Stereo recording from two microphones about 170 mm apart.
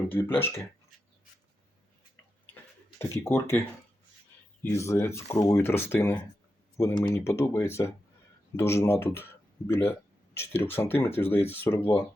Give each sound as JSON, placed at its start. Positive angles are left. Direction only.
{"t": 0.1, "sound": "speech", "side_deg": 10}
{"t": 3.0, "sound": "speech", "side_deg": 15}
{"t": 4.6, "sound": "speech", "side_deg": 15}